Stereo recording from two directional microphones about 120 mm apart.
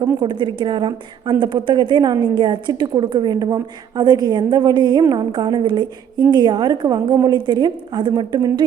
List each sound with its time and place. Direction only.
0.2 s a woman's voice: 40° right (ahead or behind)